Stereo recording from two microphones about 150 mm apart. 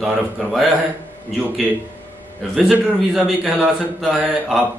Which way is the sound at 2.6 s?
Centre (ahead or behind).